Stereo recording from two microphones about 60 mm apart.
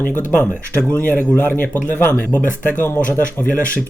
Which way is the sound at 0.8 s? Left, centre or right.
Centre.